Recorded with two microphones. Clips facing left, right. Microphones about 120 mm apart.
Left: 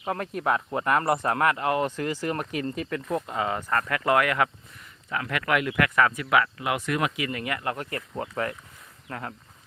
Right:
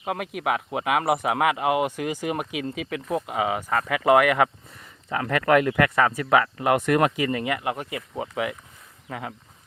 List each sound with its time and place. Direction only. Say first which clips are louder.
0.0 s speech: right 1 dB; 10° right (ahead or behind)
5.0 s speech: right 6 dB; 35° right (ahead or behind); by 7.1 s 50° right (ahead or behind)
7.2 s speech: right 5 dB; 30° right (ahead or behind); by 8.5 s 10° right (ahead or behind)